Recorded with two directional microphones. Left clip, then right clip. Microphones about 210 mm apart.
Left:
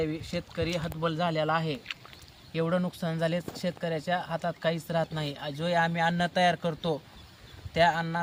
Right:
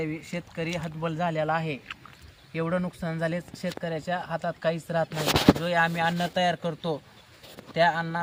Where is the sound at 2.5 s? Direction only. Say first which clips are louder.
Even; 5° right (ahead or behind).